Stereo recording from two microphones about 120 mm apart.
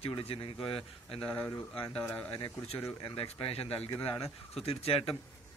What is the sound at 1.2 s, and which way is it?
Speech, 15° left (ahead or behind).